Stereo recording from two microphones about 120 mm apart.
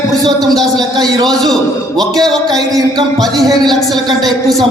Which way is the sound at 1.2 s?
5° left (ahead or behind).